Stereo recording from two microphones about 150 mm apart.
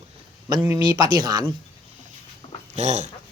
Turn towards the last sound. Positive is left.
turn(degrees=-50)  # may be behind; listen again after turning